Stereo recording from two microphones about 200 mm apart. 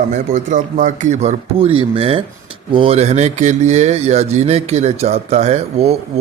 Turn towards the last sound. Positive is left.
turn(degrees=-30)  # may be behind; listen again after turning